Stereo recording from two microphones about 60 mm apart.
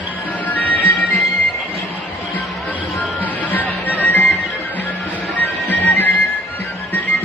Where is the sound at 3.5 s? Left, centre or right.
Left.